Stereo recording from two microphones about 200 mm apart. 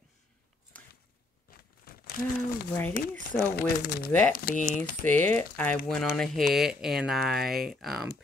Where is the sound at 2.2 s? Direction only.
40° left (ahead or behind).